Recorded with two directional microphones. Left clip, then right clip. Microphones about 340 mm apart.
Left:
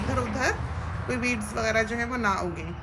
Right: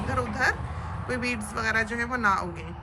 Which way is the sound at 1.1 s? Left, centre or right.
Centre.